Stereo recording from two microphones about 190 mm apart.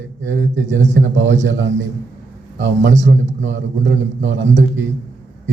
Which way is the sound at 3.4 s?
75° right (ahead or behind).